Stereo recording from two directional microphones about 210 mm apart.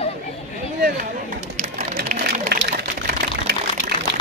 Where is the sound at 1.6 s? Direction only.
35° right (ahead or behind).